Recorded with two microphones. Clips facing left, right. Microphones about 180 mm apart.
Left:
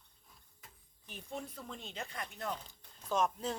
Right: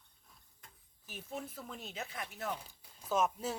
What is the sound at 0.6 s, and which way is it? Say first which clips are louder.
Speech: even; 5° right (ahead or behind).